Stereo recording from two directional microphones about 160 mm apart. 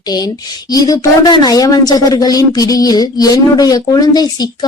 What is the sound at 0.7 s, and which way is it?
Speech, 25° left (ahead or behind).